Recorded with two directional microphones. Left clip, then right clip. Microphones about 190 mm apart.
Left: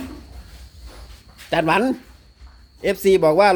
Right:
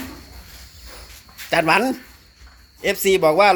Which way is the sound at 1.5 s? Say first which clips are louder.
Right 1 dB; 20° left (ahead or behind).